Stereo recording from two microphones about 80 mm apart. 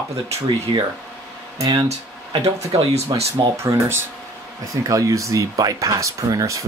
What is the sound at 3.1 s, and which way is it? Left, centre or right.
Speech, right.